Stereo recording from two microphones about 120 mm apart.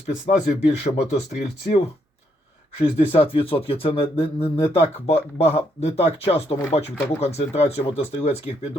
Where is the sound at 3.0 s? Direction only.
50° left (ahead or behind).